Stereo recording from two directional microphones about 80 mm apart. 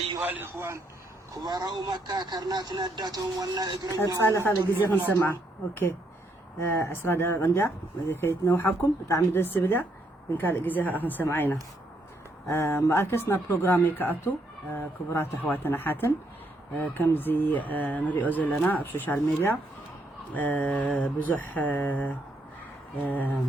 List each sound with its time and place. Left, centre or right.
0.2 s a man's voice: right
0.5 s a man's voice: right
1.3 s a man's voice: right
3.5 s speech: right
4.2 s speech: left
6.6 s speech: left